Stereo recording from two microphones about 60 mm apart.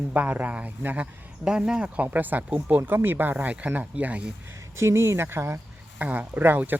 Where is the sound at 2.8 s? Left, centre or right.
Right.